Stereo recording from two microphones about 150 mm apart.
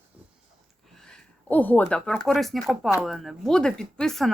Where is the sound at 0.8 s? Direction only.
5° left (ahead or behind).